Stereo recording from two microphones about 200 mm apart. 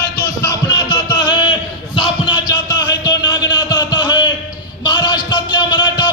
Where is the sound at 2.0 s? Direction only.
25° left (ahead or behind).